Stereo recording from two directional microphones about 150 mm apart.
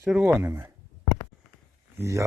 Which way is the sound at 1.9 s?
20° right (ahead or behind).